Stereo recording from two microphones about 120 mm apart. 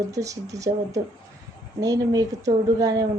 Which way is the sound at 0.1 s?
25° right (ahead or behind).